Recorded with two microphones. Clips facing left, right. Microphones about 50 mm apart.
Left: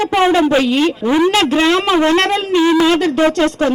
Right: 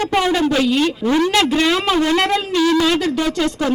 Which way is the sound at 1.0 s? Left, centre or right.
Centre.